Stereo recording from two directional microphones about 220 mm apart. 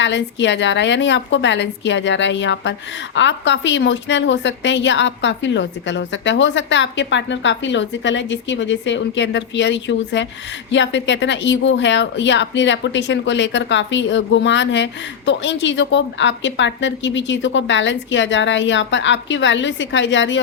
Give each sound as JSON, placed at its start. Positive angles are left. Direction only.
{"t": 0.0, "sound": "speech", "side_deg": 55}